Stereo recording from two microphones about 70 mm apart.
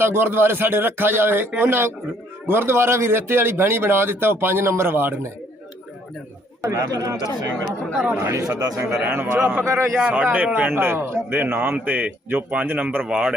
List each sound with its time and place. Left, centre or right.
0.0 s a man's voice: right
6.6 s speech: right
7.9 s speech: centre
8.2 s speech: right
9.0 s speech: right
9.6 s a man's voice: right
9.9 s speech: centre
13.0 s speech: centre